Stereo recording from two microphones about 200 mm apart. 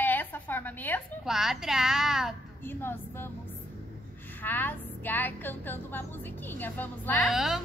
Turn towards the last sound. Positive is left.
turn(degrees=0)  # may be behind; listen again after turning